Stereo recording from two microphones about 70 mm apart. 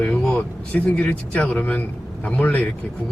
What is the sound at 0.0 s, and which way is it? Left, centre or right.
Speech, centre.